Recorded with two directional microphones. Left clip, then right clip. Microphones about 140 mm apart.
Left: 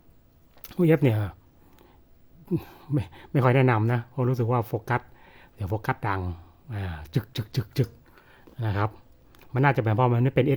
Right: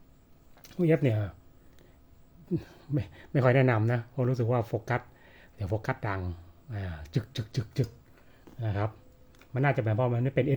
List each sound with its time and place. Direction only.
0.6 s speech: 45° left (ahead or behind)
2.5 s speech: 35° left (ahead or behind)